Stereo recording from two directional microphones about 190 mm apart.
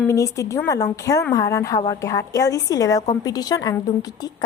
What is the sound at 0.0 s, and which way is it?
A woman's voice, 15° left (ahead or behind).